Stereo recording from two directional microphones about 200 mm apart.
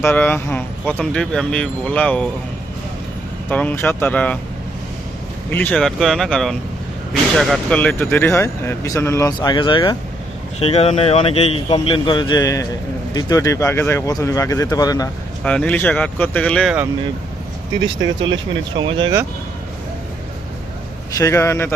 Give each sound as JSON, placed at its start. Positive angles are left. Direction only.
{"t": 0.0, "sound": "speech", "side_deg": 10}
{"t": 3.5, "sound": "speech", "side_deg": 10}
{"t": 5.5, "sound": "a man's voice", "side_deg": 10}
{"t": 15.4, "sound": "speech", "side_deg": 5}
{"t": 18.8, "sound": "speech", "side_deg": -25}
{"t": 21.2, "sound": "speech", "side_deg": 15}